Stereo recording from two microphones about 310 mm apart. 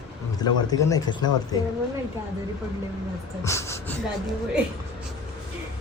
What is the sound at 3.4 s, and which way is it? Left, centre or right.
Speech, centre.